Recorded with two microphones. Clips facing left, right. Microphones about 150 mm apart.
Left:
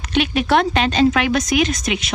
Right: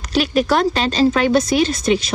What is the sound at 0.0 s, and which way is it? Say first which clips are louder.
A woman's voice: right 2 dB; 40° right (ahead or behind).